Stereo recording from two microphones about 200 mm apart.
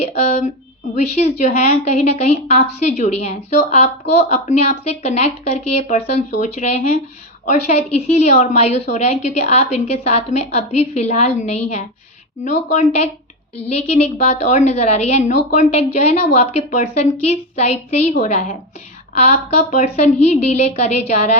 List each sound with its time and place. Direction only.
0.0 s a woman's voice: 35° left (ahead or behind)
13.6 s a woman's voice: 30° left (ahead or behind)